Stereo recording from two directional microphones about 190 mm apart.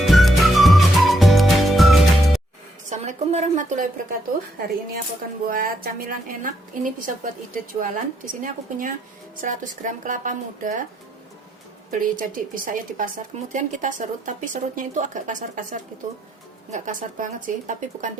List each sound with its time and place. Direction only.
0.0 s music: centre (ahead or behind)
2.9 s a sound: 35° right (ahead or behind)
5.5 s a woman's voice: 50° right (ahead or behind)
11.9 s a woman's voice: 45° right (ahead or behind)